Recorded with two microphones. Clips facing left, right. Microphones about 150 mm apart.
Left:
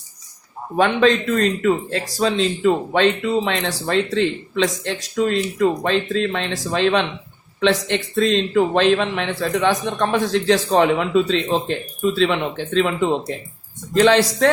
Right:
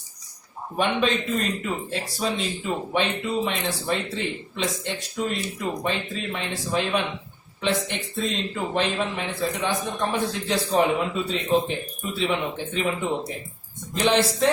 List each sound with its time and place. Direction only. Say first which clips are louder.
0.8 s a man's voice: left 7 dB; 90° left